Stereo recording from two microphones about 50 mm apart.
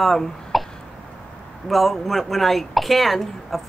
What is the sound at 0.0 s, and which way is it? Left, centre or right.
Speech, centre.